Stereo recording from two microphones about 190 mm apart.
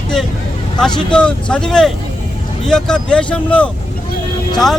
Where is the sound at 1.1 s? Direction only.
5° left (ahead or behind).